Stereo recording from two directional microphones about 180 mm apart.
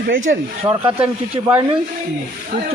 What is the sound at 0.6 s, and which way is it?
Speech, 15° right (ahead or behind).